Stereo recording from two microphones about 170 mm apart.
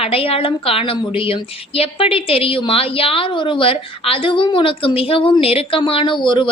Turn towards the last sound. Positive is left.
turn(degrees=30)  # may be behind; listen again after turning